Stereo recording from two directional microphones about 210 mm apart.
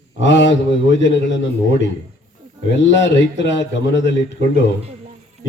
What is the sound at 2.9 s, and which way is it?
A man's voice, 60° left (ahead or behind).